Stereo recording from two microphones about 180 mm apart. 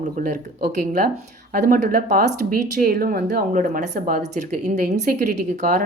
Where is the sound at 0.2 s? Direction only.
45° right (ahead or behind).